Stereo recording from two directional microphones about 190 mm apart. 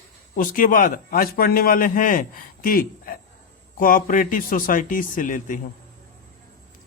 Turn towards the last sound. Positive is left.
turn(degrees=45)  # may be behind; listen again after turning